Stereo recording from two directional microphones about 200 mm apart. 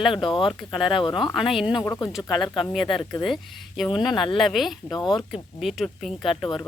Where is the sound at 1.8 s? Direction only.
15° left (ahead or behind).